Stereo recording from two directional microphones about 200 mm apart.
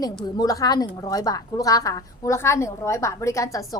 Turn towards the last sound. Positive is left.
turn(degrees=15)  # may be behind; listen again after turning